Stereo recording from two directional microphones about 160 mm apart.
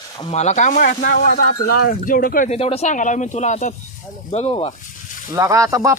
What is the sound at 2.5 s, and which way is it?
Speech, 40° left (ahead or behind).